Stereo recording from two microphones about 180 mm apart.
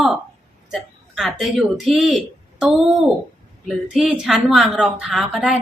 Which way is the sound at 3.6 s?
5° right (ahead or behind).